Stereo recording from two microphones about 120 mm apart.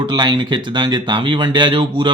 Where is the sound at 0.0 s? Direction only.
40° right (ahead or behind).